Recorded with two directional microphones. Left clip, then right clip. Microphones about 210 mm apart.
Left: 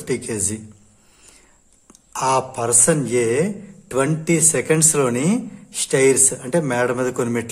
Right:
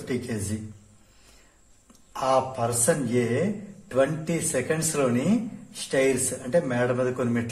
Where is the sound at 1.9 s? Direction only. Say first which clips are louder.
Left 4 dB; 40° left (ahead or behind).